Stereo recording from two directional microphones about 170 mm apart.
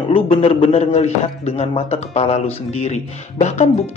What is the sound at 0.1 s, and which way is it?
A man's voice, 35° left (ahead or behind).